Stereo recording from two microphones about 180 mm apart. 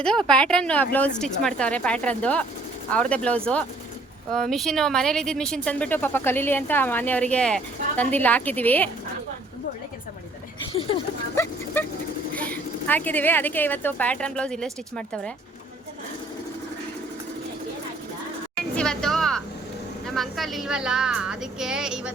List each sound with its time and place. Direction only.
0.0 s speech: 5° left (ahead or behind)
10.7 s speech: 30° left (ahead or behind)
11.3 s speech: 10° left (ahead or behind)
18.8 s a sound: 5° left (ahead or behind)
20.1 s speech: centre (ahead or behind)